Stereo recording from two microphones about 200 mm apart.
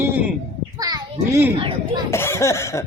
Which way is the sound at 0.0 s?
10° right (ahead or behind).